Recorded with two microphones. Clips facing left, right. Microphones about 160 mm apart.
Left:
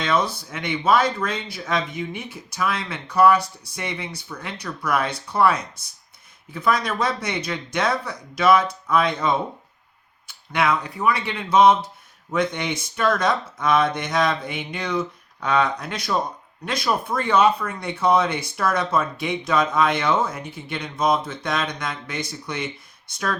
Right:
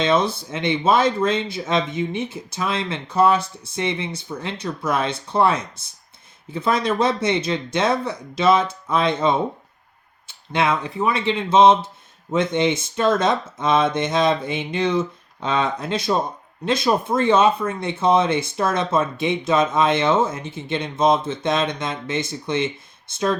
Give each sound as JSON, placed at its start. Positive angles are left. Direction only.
{"t": 0.0, "sound": "speech", "side_deg": -25}